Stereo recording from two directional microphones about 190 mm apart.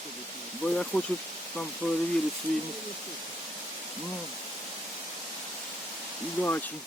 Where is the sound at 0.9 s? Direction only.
10° left (ahead or behind).